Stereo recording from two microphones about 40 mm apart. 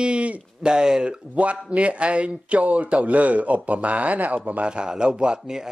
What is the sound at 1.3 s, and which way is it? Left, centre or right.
Speech, right.